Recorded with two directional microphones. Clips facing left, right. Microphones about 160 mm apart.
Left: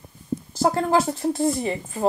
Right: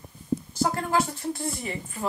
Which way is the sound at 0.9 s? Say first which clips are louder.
Left 5 dB; 30° left (ahead or behind).